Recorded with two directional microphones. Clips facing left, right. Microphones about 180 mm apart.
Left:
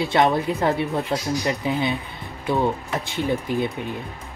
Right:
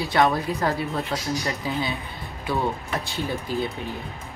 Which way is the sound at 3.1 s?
15° left (ahead or behind).